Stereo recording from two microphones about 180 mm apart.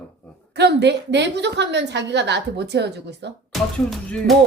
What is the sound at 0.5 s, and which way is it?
A woman's voice, 70° right (ahead or behind).